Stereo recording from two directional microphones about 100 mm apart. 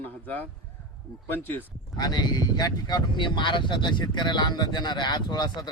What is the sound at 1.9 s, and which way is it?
Speech, 40° left (ahead or behind).